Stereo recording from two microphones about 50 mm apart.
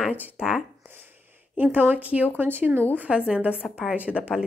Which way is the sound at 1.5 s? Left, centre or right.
Right.